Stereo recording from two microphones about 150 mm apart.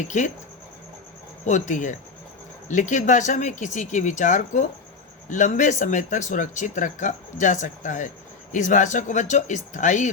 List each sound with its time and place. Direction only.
0.0 s speech: 55° left (ahead or behind)
1.5 s speech: 55° left (ahead or behind)